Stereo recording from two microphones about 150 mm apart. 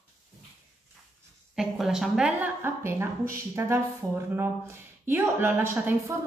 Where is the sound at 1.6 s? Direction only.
5° right (ahead or behind).